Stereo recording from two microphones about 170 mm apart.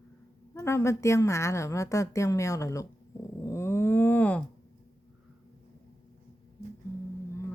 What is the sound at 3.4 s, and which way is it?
Dog, 15° left (ahead or behind).